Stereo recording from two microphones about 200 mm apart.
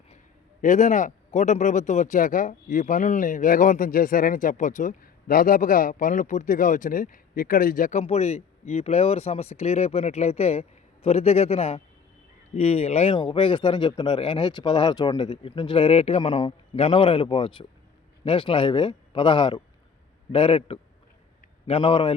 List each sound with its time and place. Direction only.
0.6 s speech: 35° left (ahead or behind)